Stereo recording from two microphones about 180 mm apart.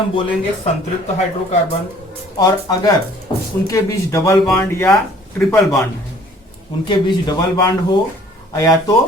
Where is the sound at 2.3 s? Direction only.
20° left (ahead or behind).